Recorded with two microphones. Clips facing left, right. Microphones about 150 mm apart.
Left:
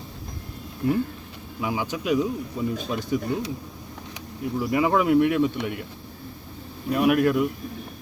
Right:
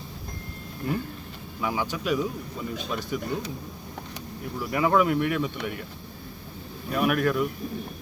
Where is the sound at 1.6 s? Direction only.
15° left (ahead or behind).